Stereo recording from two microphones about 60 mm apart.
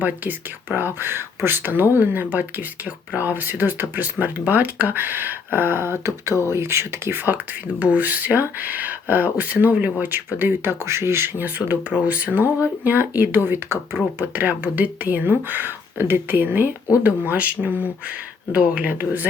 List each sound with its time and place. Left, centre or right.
0.0 s speech: right
0.9 s speech: right
7.8 s speech: right